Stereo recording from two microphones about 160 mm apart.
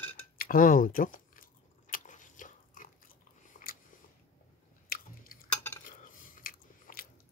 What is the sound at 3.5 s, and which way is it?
Biting, 55° left (ahead or behind).